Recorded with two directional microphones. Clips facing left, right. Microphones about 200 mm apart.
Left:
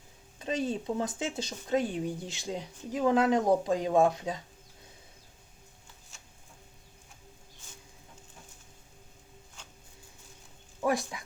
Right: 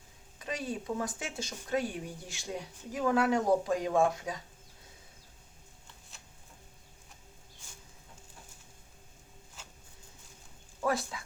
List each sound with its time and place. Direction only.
0.3 s speech: 25° left (ahead or behind)
9.6 s a sound: 5° right (ahead or behind)
10.8 s speech: 15° left (ahead or behind)